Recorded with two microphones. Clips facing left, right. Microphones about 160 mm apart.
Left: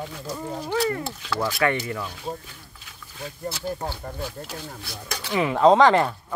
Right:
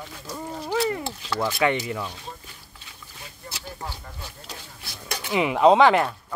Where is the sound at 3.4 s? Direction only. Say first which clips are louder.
Left 8 dB; 40° left (ahead or behind).